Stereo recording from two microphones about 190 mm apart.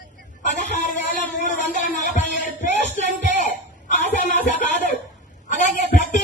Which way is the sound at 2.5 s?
40° left (ahead or behind).